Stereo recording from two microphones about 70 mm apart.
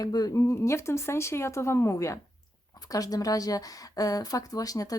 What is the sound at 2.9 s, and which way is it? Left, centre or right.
Speech, left.